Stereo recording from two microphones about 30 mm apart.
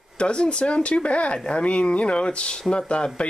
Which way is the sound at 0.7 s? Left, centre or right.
Left.